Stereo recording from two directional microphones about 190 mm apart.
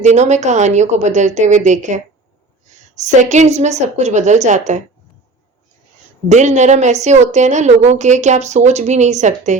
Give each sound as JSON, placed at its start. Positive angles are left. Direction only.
{"t": 0.0, "sound": "a woman's voice", "side_deg": -35}
{"t": 6.2, "sound": "a woman's voice", "side_deg": -40}